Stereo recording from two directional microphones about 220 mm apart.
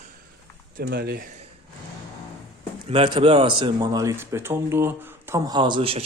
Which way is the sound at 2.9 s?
25° right (ahead or behind).